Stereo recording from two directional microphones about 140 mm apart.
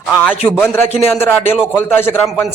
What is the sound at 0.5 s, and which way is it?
Speech, 15° left (ahead or behind).